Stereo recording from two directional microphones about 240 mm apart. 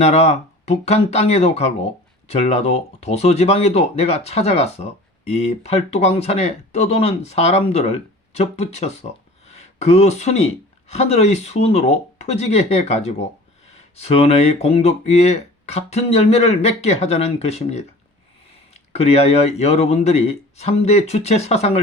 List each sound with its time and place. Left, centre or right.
0.0 s speech: left
18.9 s speech: left